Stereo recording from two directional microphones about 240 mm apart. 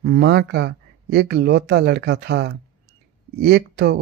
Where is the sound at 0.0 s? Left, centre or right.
Right.